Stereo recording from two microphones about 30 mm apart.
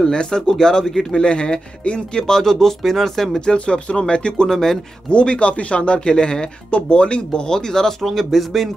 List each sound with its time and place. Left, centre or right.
0.0 s speech: left
1.2 s speech: left
2.5 s speech: centre
3.5 s speech: left
4.5 s speech: centre
5.1 s speech: left
6.9 s speech: left
7.4 s speech: left
8.0 s a man's voice: centre